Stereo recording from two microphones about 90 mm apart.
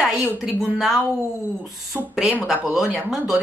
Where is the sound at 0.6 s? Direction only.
5° right (ahead or behind).